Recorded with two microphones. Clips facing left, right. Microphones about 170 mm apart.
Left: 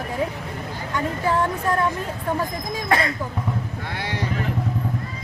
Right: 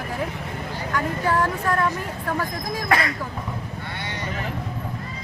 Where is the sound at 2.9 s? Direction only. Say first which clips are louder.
Left 1 dB; 25° left (ahead or behind).